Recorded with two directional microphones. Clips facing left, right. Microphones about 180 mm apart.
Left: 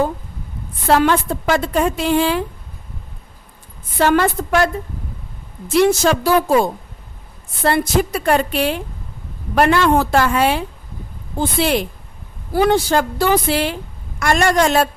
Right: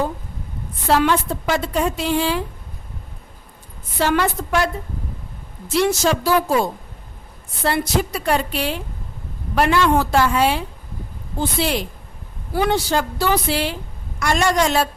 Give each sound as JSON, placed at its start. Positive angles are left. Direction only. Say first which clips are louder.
{"t": 0.9, "sound": "a woman's voice", "louder": "left 3 dB", "side_deg": 50}
{"t": 3.9, "sound": "a woman's voice", "louder": "left 4 dB", "side_deg": 50}
{"t": 5.7, "sound": "a woman's voice", "louder": "left 4 dB", "side_deg": 55}